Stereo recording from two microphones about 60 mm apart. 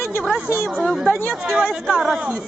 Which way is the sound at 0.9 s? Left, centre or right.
Centre.